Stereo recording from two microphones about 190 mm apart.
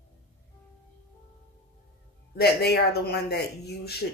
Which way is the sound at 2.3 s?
55° left (ahead or behind).